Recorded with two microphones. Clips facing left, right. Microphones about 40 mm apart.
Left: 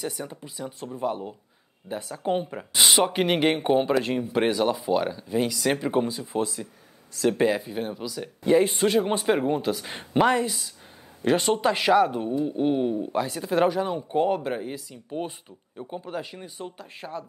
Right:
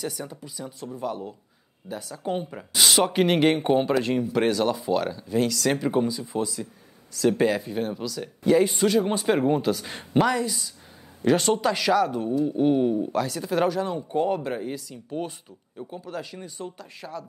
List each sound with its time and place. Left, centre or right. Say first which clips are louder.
0.3 s speech: left 1 dB; left; by 4.0 s centre
4.2 s speech: right 1 dB; centre
6.3 s speech: left 1 dB; left
7.4 s speech: even; centre
8.6 s speech: even; left
9.3 s speech: right 3 dB; centre
10.2 s speech: left 2 dB; left
11.2 s speech: right 1 dB; centre
12.6 s speech: right 3 dB; centre
13.1 s speech: even; left